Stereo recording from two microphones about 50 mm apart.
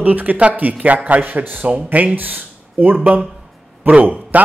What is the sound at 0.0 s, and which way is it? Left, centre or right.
A man's voice, right.